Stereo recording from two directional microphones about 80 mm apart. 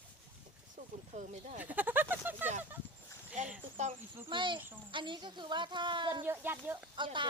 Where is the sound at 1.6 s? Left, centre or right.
Right.